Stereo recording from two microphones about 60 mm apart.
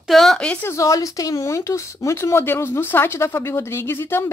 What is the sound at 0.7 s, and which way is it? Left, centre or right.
Speech, left.